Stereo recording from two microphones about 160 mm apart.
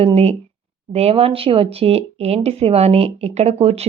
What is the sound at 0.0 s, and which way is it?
Speech, 40° right (ahead or behind).